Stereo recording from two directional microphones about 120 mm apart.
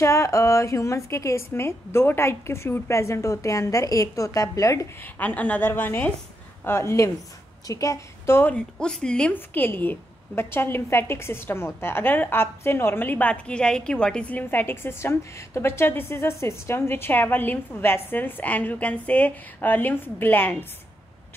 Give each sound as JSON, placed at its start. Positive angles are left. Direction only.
{"t": 0.0, "sound": "a woman's voice", "side_deg": 25}
{"t": 5.0, "sound": "a woman's voice", "side_deg": 15}
{"t": 8.5, "sound": "a woman's voice", "side_deg": 5}